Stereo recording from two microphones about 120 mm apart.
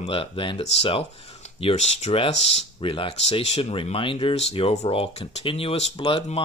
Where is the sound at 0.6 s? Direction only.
55° left (ahead or behind).